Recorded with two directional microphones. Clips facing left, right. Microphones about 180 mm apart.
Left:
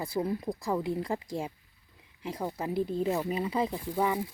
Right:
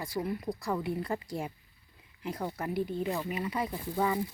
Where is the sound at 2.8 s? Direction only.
35° left (ahead or behind).